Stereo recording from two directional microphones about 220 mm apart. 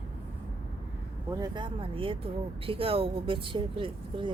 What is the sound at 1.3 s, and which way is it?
Speech, 20° right (ahead or behind).